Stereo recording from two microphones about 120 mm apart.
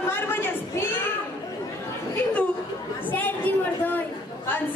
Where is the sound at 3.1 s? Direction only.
15° left (ahead or behind).